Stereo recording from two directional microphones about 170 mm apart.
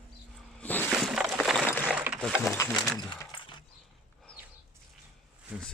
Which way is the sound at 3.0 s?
25° left (ahead or behind).